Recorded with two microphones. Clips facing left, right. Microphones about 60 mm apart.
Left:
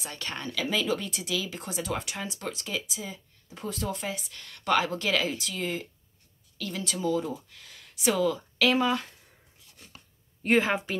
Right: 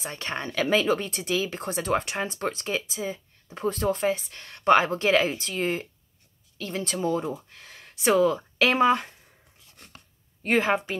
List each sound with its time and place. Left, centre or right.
0.0 s speech: right
0.5 s speech: right
9.8 s a sound: right
10.4 s speech: centre